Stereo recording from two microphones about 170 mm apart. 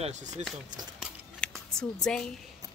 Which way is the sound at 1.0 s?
5° left (ahead or behind).